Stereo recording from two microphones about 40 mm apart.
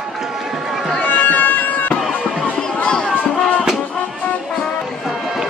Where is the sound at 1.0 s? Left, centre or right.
Left.